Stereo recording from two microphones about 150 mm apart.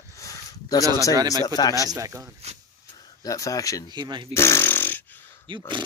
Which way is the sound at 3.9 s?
30° right (ahead or behind).